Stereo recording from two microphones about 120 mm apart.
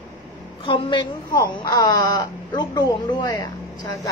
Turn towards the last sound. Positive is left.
turn(degrees=30)  # may be behind; listen again after turning